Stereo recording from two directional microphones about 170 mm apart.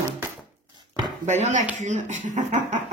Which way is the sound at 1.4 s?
45° right (ahead or behind).